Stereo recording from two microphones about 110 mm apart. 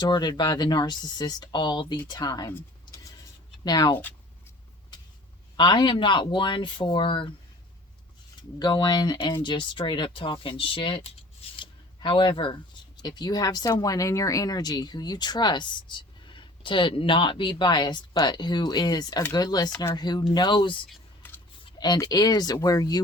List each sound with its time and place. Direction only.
0.0 s speech: 40° left (ahead or behind)
2.8 s vehicle: 35° left (ahead or behind)
3.6 s speech: 40° left (ahead or behind)
5.5 s speech: 45° left (ahead or behind)
8.4 s speech: 40° left (ahead or behind)
21.6 s speech: 40° left (ahead or behind)